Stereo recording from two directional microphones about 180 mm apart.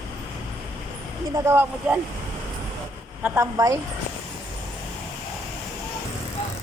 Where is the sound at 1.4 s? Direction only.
15° right (ahead or behind).